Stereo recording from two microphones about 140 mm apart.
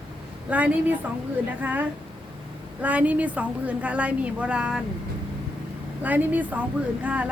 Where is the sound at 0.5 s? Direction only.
10° right (ahead or behind).